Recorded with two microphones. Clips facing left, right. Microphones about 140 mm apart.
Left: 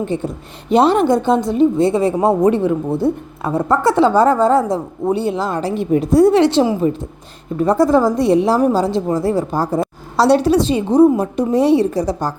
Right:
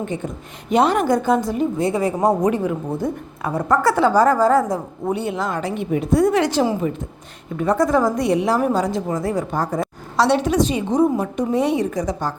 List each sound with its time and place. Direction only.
0.0 s a woman's voice: 30° left (ahead or behind)